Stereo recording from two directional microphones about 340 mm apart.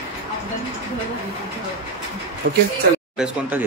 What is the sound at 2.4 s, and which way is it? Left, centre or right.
Speech, right.